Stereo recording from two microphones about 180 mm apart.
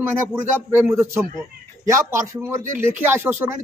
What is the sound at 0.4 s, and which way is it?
A man's voice, 15° right (ahead or behind).